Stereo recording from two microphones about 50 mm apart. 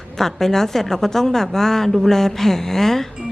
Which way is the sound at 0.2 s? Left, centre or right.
Centre.